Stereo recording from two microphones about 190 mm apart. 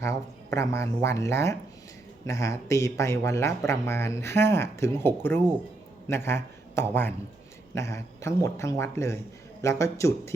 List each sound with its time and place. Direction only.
0.0 s a man's voice: 15° left (ahead or behind)